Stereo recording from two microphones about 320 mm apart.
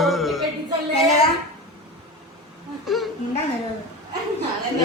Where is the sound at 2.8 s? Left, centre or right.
Centre.